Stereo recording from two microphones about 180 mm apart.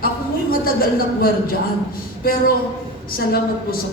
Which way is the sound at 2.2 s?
55° left (ahead or behind).